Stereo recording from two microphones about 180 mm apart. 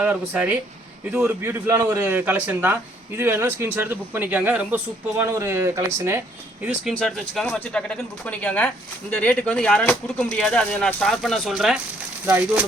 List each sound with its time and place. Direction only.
0.0 s a man's voice: 5° right (ahead or behind)
6.9 s a man's voice: 5° left (ahead or behind)